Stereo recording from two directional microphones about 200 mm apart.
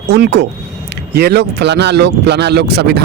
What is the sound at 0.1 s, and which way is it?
Speech, 55° right (ahead or behind).